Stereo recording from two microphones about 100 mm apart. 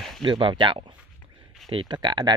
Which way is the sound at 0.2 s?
55° right (ahead or behind).